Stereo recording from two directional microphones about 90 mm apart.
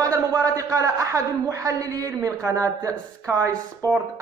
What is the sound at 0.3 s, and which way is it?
A man's voice, 40° right (ahead or behind).